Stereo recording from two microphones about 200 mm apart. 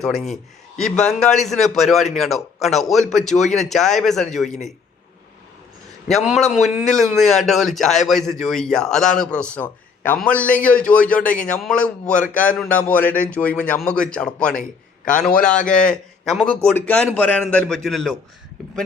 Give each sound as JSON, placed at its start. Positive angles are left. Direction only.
{"t": 0.0, "sound": "a man's voice", "side_deg": 0}
{"t": 4.4, "sound": "a man's voice", "side_deg": 35}
{"t": 6.1, "sound": "a man's voice", "side_deg": 0}